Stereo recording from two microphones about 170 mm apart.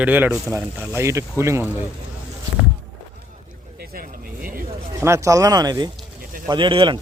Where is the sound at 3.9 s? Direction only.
55° right (ahead or behind).